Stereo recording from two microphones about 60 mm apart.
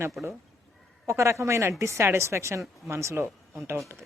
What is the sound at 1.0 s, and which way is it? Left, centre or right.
Speech, right.